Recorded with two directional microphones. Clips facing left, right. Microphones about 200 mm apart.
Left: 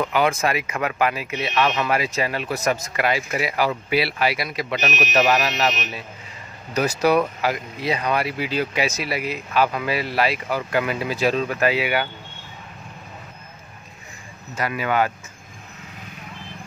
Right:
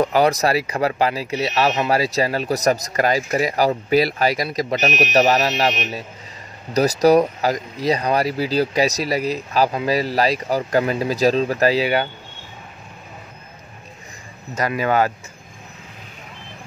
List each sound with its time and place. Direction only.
0.0 s speech: 40° right (ahead or behind)
14.8 s speech: 40° right (ahead or behind)